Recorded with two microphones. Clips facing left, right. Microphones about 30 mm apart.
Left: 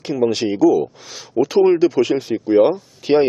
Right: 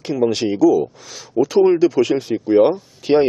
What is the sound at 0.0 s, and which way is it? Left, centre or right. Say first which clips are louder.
A man's voice: even; centre.